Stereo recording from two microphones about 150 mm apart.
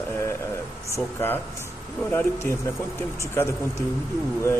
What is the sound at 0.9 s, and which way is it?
Speech, 15° left (ahead or behind).